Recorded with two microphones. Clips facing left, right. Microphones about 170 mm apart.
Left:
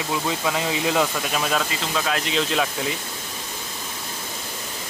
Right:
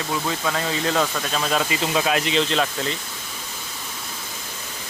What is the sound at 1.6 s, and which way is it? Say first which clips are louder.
Speech: right 3 dB; 5° right (ahead or behind).